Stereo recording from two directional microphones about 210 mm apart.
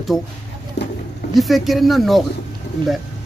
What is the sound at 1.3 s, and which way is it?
Speech, centre (ahead or behind).